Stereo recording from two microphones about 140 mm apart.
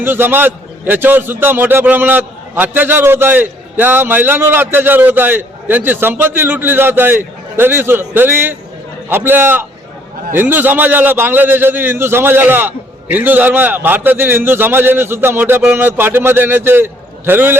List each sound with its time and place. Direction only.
0.0 s a man's voice: 15° right (ahead or behind)